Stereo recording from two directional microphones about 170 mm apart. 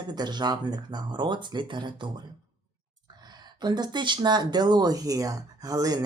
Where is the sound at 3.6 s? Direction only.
25° right (ahead or behind).